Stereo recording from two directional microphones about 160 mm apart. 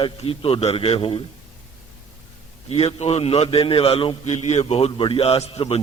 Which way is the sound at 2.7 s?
40° left (ahead or behind).